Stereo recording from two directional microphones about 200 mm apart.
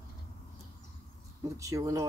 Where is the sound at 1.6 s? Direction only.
15° right (ahead or behind).